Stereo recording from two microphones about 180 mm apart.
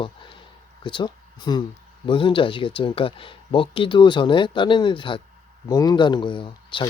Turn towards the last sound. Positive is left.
turn(degrees=25)  # may be behind; listen again after turning